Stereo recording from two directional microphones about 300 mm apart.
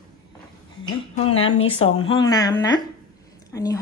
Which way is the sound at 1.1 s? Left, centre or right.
Left.